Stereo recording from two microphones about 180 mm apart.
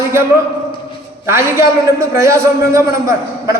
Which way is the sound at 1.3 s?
15° right (ahead or behind).